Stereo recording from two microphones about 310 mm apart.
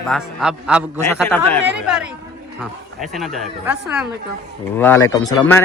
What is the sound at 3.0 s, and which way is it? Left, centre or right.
Speech, centre.